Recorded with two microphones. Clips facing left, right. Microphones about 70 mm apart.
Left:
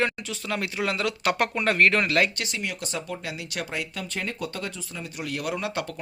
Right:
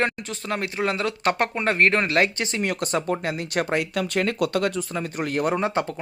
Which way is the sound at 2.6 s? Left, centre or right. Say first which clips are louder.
Right 8 dB; right.